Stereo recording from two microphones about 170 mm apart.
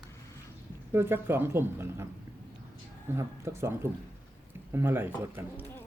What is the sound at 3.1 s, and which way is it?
Speech, 15° right (ahead or behind).